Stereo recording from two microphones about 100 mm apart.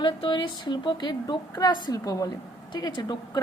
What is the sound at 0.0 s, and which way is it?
A woman's voice, 50° left (ahead or behind).